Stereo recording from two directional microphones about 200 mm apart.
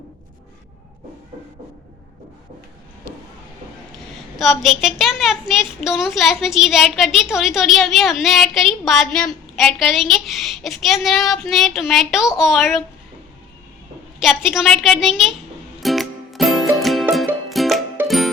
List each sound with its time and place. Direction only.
4.4 s a woman's voice: centre (ahead or behind)
14.2 s a woman's voice: centre (ahead or behind)
15.8 s music: centre (ahead or behind)